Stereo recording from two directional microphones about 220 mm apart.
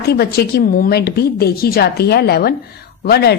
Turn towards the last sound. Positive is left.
turn(degrees=45)  # may be behind; listen again after turning